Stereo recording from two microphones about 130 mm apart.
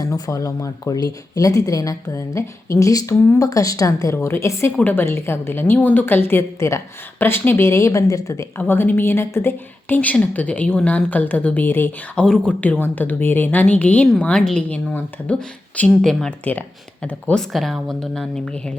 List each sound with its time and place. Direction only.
0.0 s a woman's voice: 25° left (ahead or behind); by 18.7 s 5° left (ahead or behind)